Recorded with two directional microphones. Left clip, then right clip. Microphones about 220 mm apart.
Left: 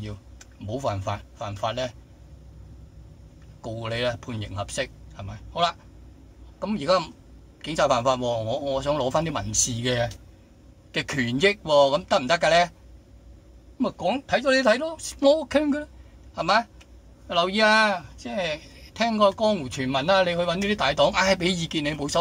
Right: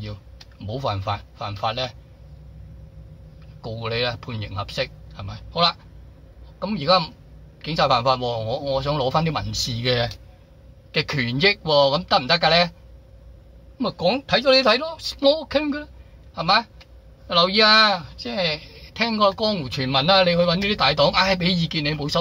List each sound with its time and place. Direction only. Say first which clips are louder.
0.7 s speech: right 2 dB; 10° left (ahead or behind)
3.6 s speech: right 2 dB; 15° left (ahead or behind)
13.7 s speech: right 4 dB; 5° left (ahead or behind)